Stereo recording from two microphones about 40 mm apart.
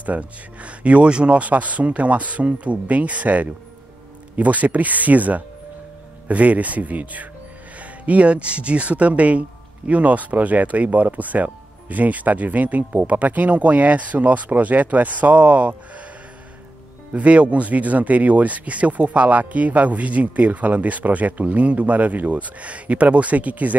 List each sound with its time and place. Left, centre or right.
0.0 s speech: right
17.1 s speech: right